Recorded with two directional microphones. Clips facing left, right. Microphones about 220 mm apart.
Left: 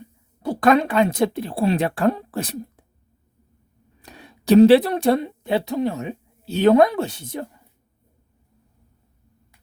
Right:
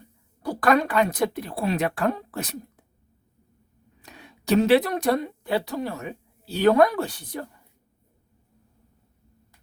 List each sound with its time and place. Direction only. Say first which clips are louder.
0.4 s speech: left 4 dB; 25° left (ahead or behind)
4.0 s speech: left 7 dB; 35° left (ahead or behind)